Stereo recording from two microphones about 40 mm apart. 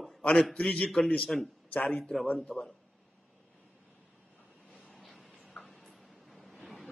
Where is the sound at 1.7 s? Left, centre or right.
Left.